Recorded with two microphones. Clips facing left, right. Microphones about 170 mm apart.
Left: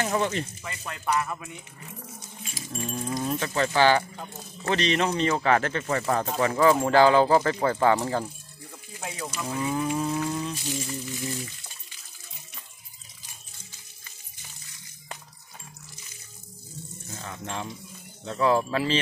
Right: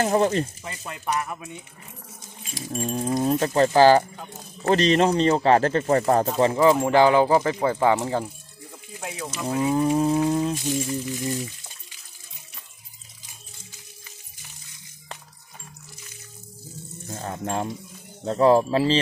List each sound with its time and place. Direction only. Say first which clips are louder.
0.0 s speech: right 6 dB; 35° right (ahead or behind)
0.8 s speech: even; 15° right (ahead or behind)
2.7 s speech: right 6 dB; 35° right (ahead or behind)
6.3 s speech: even; 20° right (ahead or behind)
9.0 s speech: right 2 dB; centre (ahead or behind)
9.6 s speech: right 6 dB; 35° right (ahead or behind)
10.7 s speech: right 6 dB; 15° right (ahead or behind)
17.1 s speech: right 7 dB; 45° right (ahead or behind)